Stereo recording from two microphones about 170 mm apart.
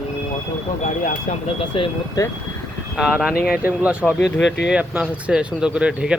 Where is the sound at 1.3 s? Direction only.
40° left (ahead or behind).